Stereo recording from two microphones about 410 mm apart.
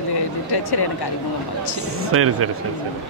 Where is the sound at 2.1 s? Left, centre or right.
Right.